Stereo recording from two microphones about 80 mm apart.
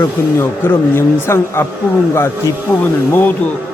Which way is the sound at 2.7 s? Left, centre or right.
Left.